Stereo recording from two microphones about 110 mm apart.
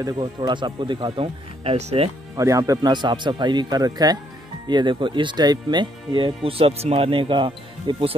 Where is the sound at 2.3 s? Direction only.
30° right (ahead or behind).